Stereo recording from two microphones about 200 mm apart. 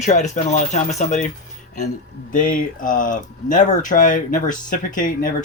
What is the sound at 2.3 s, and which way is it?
Speech, 40° left (ahead or behind).